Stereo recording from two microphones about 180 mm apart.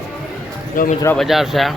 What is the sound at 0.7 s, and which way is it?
Speech, 50° left (ahead or behind).